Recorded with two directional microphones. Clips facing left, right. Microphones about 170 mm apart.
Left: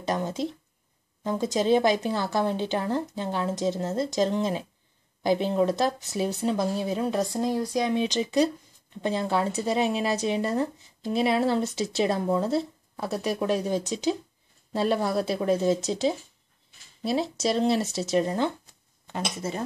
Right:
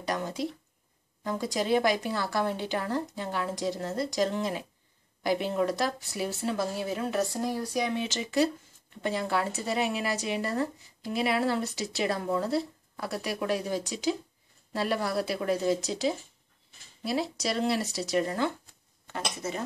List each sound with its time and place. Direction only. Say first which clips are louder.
0.0 s speech: left 3 dB; 25° left (ahead or behind)